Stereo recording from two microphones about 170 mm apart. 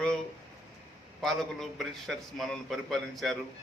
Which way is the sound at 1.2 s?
Centre (ahead or behind).